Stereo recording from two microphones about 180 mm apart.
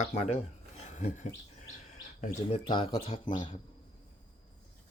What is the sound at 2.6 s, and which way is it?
Speech, 30° left (ahead or behind).